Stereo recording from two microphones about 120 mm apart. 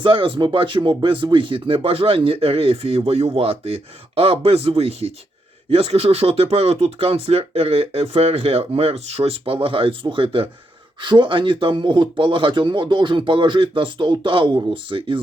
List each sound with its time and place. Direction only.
0.0 s speech: 45° right (ahead or behind)